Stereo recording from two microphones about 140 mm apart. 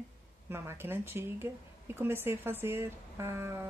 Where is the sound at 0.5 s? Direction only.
15° right (ahead or behind).